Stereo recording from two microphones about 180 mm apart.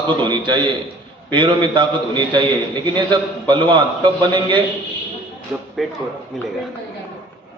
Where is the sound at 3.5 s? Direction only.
25° right (ahead or behind).